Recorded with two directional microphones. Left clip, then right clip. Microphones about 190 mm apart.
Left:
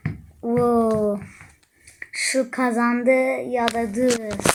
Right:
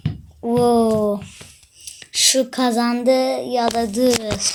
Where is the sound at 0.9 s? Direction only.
5° left (ahead or behind).